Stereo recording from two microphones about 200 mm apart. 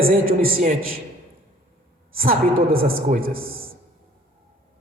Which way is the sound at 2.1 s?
45° right (ahead or behind).